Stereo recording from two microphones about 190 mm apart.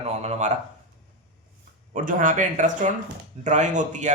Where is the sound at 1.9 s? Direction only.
45° right (ahead or behind).